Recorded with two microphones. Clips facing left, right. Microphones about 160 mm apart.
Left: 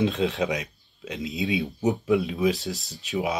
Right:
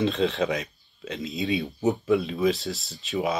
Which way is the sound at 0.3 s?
10° left (ahead or behind).